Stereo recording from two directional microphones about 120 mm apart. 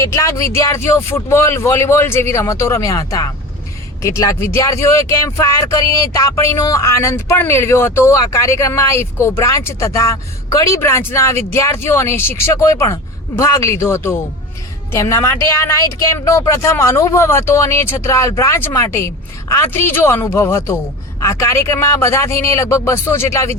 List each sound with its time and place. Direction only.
0.0 s speech: 25° left (ahead or behind)